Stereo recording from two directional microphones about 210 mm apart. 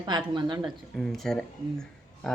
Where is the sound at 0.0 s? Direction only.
20° right (ahead or behind).